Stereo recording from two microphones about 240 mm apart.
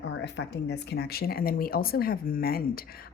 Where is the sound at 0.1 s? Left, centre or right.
Left.